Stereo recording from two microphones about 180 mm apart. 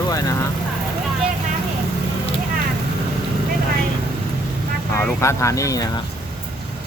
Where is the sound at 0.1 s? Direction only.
20° left (ahead or behind).